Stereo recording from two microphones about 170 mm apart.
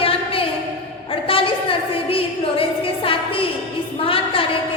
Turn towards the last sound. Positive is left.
turn(degrees=35)  # may be behind; listen again after turning